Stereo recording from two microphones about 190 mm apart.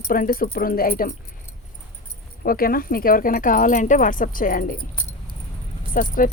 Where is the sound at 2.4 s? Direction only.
50° left (ahead or behind).